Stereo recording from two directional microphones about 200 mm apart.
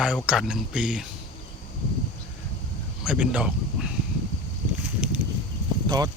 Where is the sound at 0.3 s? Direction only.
5° right (ahead or behind).